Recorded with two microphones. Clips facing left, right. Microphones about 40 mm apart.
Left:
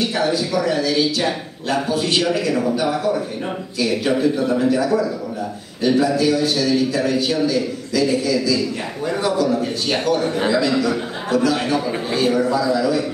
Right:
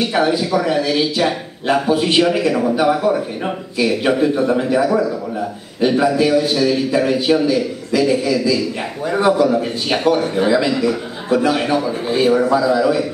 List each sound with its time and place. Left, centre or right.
0.1 s speech: right